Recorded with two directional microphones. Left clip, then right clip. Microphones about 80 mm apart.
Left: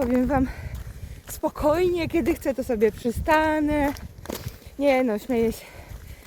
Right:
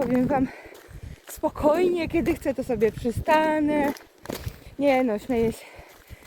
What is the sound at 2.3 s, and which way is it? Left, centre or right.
Speech, left.